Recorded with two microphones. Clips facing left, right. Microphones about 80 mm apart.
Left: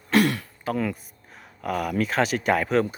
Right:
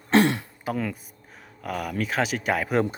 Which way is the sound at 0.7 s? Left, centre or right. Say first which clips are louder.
Left 4 dB; centre.